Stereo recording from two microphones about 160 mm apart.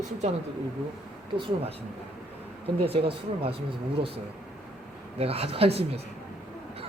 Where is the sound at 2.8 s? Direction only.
35° right (ahead or behind).